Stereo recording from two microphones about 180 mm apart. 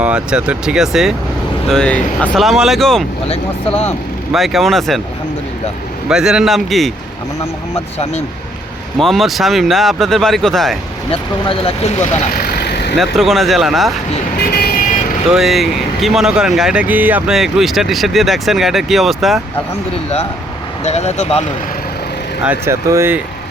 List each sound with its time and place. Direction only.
0.0 s speech: 5° right (ahead or behind)
3.2 s speech: 35° left (ahead or behind)
4.3 s speech: centre (ahead or behind)
6.1 s speech: 5° right (ahead or behind)
9.0 s speech: centre (ahead or behind)
11.1 s speech: 30° left (ahead or behind)
12.3 s vehicle: 60° left (ahead or behind)
13.0 s speech: centre (ahead or behind)
14.5 s vehicle: 55° left (ahead or behind)
15.3 s speech: centre (ahead or behind)
20.8 s speech: 35° left (ahead or behind)
22.4 s speech: 15° right (ahead or behind)